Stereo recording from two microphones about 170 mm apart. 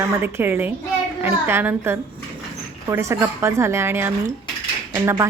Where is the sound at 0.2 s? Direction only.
10° right (ahead or behind).